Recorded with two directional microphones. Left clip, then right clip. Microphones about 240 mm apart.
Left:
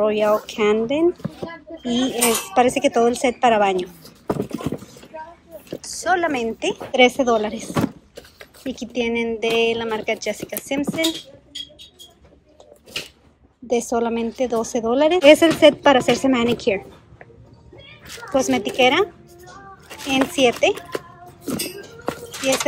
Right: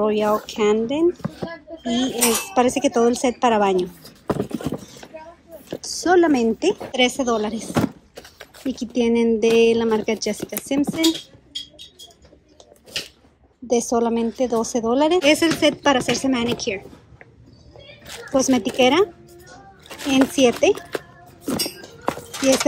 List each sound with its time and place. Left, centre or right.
0.0 s a woman's voice: centre
2.2 s speech: centre
2.5 s a woman's voice: centre
4.0 s clip-clop: centre
5.8 s a woman's voice: right
6.9 s a woman's voice: centre
13.7 s a woman's voice: centre
18.3 s a woman's voice: centre
20.4 s a woman's voice: centre
21.5 s a sound: centre